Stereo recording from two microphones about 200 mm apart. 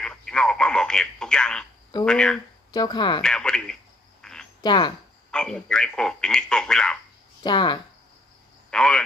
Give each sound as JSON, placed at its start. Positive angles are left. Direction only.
{"t": 0.0, "sound": "telephone", "side_deg": 5}
{"t": 2.0, "sound": "speech", "side_deg": 5}
{"t": 2.7, "sound": "speech", "side_deg": 20}
{"t": 3.2, "sound": "speech", "side_deg": 5}
{"t": 4.2, "sound": "cricket", "side_deg": 5}
{"t": 4.6, "sound": "speech", "side_deg": 20}
{"t": 5.3, "sound": "speech", "side_deg": 5}
{"t": 7.4, "sound": "speech", "side_deg": 20}
{"t": 8.6, "sound": "speech", "side_deg": 5}